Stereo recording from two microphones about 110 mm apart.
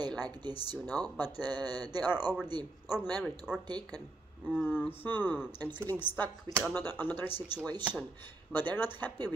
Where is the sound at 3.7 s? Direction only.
40° right (ahead or behind).